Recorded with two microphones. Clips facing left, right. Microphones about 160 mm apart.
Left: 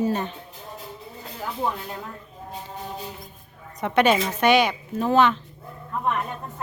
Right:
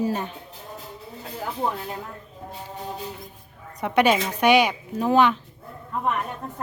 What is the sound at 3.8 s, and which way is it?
A woman's voice, 10° right (ahead or behind).